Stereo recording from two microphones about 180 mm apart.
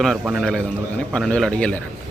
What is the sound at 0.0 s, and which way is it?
A man's voice, centre (ahead or behind).